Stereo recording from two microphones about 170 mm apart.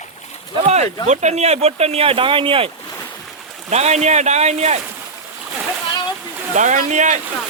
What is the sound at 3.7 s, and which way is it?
Speech, 40° right (ahead or behind).